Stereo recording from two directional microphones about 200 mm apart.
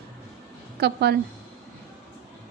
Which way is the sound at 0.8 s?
55° right (ahead or behind).